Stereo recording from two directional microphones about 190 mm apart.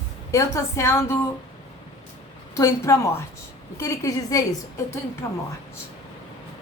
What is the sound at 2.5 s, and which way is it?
A woman's voice, 15° left (ahead or behind).